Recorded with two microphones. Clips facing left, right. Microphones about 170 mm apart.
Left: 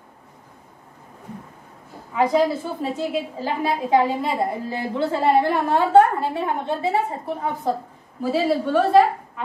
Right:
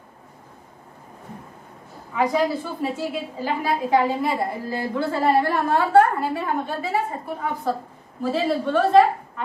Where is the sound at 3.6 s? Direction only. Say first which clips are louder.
Left 1 dB; 20° left (ahead or behind).